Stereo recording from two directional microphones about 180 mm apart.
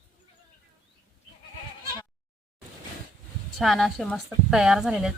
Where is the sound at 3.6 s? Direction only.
Centre (ahead or behind).